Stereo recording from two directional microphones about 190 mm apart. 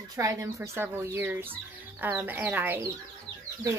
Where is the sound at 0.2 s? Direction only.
15° right (ahead or behind).